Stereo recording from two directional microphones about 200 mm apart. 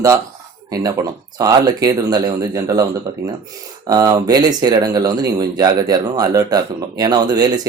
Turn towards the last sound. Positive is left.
turn(degrees=-20)  # may be behind; listen again after turning